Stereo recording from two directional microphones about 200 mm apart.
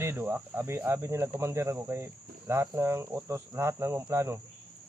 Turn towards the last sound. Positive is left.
turn(degrees=-15)  # may be behind; listen again after turning